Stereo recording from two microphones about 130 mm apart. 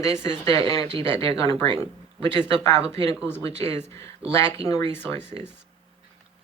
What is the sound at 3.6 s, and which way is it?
Speech, 20° left (ahead or behind).